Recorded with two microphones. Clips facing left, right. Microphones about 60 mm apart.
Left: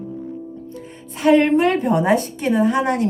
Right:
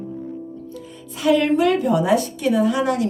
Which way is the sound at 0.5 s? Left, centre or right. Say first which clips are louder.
Left 1 dB; left.